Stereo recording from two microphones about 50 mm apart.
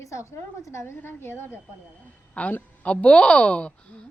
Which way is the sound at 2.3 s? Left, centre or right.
Left.